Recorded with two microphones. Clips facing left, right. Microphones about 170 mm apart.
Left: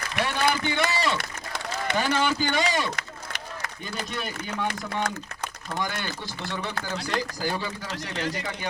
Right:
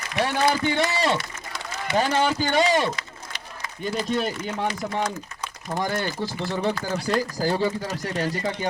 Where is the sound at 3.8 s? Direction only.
35° right (ahead or behind).